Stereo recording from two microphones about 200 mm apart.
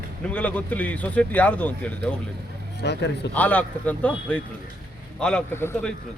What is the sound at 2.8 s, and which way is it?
Speech, 55° left (ahead or behind).